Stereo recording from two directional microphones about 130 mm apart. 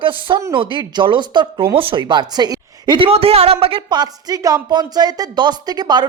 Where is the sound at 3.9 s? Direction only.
30° right (ahead or behind).